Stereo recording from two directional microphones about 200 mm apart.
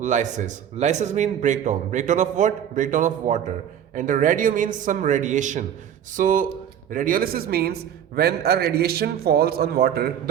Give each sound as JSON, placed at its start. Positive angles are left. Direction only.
{"t": 0.0, "sound": "a man's voice", "side_deg": -40}